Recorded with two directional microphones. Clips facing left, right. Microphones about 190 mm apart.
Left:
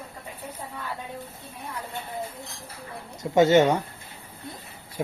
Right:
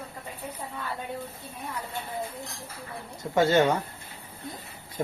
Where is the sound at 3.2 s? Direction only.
20° left (ahead or behind).